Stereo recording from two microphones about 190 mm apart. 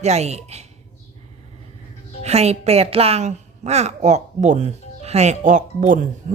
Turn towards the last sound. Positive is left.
turn(degrees=-45)  # may be behind; listen again after turning